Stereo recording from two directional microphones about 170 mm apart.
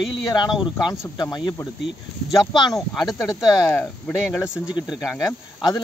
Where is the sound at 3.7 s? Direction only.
10° left (ahead or behind).